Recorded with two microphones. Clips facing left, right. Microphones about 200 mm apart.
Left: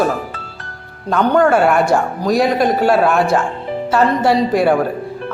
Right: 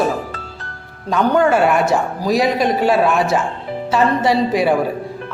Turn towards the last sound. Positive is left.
turn(degrees=0)  # may be behind; listen again after turning